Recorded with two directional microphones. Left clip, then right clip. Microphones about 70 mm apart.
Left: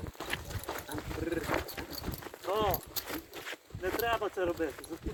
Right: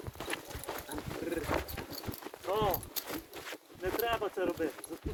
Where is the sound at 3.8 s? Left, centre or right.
Centre.